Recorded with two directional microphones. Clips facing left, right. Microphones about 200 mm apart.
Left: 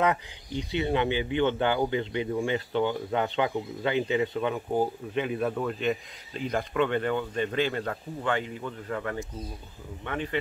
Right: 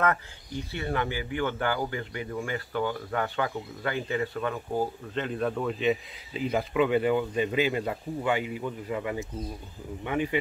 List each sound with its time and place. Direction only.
0.0 s speech: 15° left (ahead or behind); by 10.4 s 10° right (ahead or behind)